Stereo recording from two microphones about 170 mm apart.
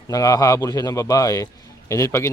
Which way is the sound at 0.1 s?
20° left (ahead or behind).